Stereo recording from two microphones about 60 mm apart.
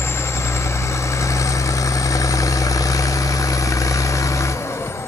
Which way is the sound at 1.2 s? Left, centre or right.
Left.